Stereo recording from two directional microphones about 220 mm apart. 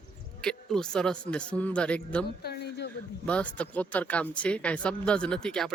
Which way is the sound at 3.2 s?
5° left (ahead or behind).